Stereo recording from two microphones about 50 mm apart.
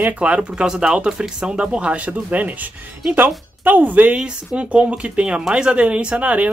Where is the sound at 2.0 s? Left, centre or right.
Right.